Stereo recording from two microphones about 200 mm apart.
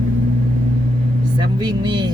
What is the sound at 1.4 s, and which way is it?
Speech, 20° right (ahead or behind).